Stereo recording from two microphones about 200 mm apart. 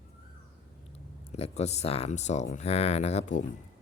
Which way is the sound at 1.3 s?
35° left (ahead or behind).